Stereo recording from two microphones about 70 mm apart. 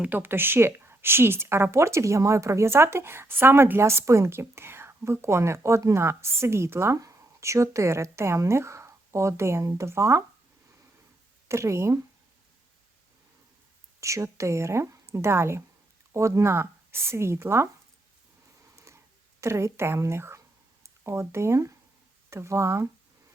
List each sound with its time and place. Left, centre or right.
0.0 s a woman's voice: right
11.4 s speech: right
14.0 s a woman's voice: right
19.4 s a woman's voice: right